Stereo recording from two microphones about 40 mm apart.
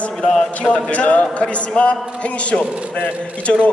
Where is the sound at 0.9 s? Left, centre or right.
Left.